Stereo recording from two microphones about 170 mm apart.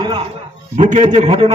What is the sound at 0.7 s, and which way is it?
Speech, 45° right (ahead or behind).